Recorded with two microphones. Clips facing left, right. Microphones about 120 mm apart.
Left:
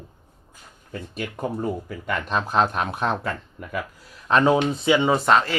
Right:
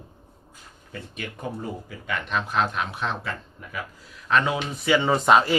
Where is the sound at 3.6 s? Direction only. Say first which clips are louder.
Left 5 dB; 65° left (ahead or behind).